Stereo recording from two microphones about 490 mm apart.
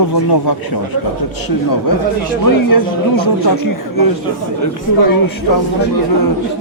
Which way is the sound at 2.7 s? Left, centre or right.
Left.